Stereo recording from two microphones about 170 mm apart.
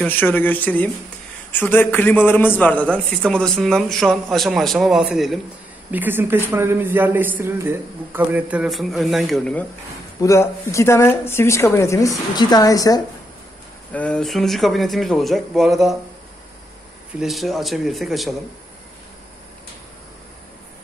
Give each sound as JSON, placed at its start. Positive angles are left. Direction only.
{"t": 0.0, "sound": "a man's voice", "side_deg": 10}
{"t": 10.2, "sound": "a woman's voice", "side_deg": 15}
{"t": 13.9, "sound": "speech", "side_deg": 5}
{"t": 17.2, "sound": "speech", "side_deg": 0}